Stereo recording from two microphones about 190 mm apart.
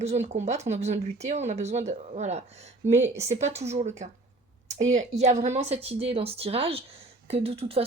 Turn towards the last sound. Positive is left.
turn(degrees=-30)  # may be behind; listen again after turning